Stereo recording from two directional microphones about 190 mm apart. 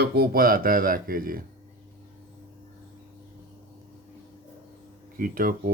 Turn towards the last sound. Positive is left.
turn(degrees=-45)  # may be behind; listen again after turning